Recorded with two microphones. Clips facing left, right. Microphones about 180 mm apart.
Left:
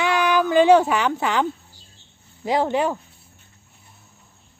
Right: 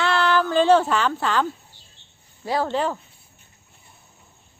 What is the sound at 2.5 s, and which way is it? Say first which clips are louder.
Speech: left 3 dB; 15° left (ahead or behind).